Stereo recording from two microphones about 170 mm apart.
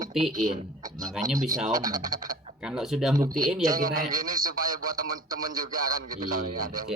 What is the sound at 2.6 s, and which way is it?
Speech, centre (ahead or behind).